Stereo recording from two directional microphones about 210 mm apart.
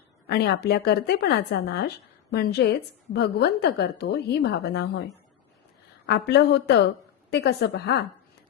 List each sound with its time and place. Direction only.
0.3 s a woman's voice: 50° left (ahead or behind)
6.1 s a woman's voice: 50° left (ahead or behind)